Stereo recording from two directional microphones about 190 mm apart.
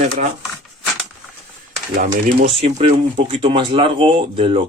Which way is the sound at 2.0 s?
40° right (ahead or behind).